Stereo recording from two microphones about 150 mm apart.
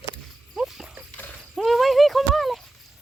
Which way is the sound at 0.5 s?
5° right (ahead or behind).